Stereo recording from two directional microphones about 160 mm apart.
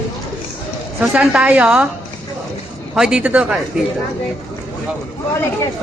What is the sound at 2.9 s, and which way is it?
Speech, 5° right (ahead or behind).